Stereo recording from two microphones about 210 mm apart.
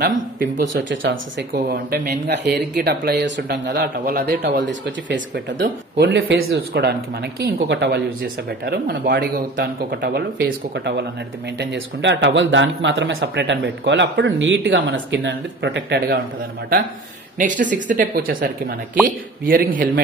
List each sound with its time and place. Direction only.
0.0 s speech: 50° right (ahead or behind)
0.8 s speech: 65° right (ahead or behind)
1.7 s speech: 50° right (ahead or behind)
17.4 s a man's voice: 40° right (ahead or behind)